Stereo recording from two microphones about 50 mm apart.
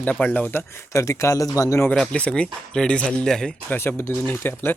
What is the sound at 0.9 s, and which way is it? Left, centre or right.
Speech, left.